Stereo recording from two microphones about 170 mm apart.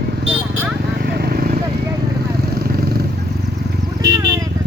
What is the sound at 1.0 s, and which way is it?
Vehicle, 70° right (ahead or behind).